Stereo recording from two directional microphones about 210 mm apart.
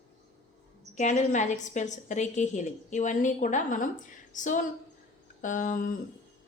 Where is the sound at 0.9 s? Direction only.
35° left (ahead or behind).